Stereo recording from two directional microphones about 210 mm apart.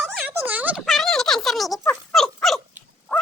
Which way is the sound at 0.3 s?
10° right (ahead or behind).